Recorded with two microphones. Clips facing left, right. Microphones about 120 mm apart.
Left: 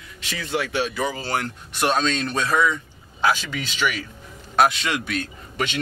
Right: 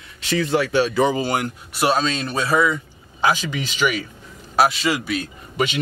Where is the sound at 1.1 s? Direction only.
15° right (ahead or behind).